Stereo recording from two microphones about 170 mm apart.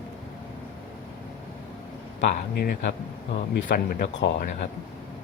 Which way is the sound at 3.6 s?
50° left (ahead or behind).